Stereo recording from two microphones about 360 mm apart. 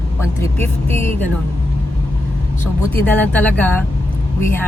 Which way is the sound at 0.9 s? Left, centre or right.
Centre.